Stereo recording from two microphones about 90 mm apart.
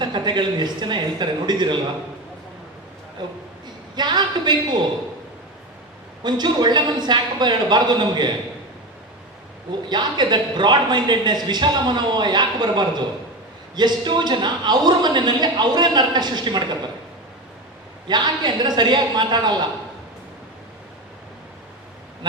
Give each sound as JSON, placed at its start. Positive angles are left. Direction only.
{"t": 0.0, "sound": "speech", "side_deg": -55}
{"t": 3.2, "sound": "speech", "side_deg": -55}
{"t": 6.2, "sound": "a man's voice", "side_deg": -55}
{"t": 9.9, "sound": "a man's voice", "side_deg": -55}
{"t": 18.1, "sound": "a man's voice", "side_deg": -55}